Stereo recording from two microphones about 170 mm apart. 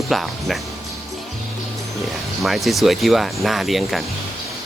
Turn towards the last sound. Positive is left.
turn(degrees=0)  # may be behind; listen again after turning